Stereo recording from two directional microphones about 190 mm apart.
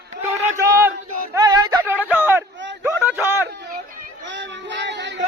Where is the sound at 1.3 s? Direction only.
20° right (ahead or behind).